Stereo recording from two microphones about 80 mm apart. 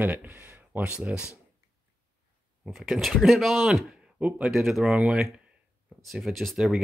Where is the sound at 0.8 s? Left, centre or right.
Centre.